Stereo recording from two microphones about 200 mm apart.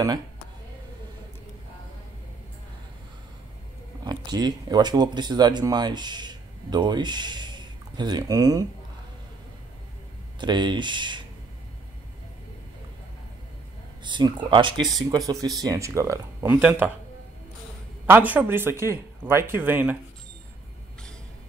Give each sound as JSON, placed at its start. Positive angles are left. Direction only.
{"t": 4.0, "sound": "speech", "side_deg": -20}
{"t": 10.4, "sound": "speech", "side_deg": -20}
{"t": 14.0, "sound": "speech", "side_deg": -25}
{"t": 18.0, "sound": "speech", "side_deg": -10}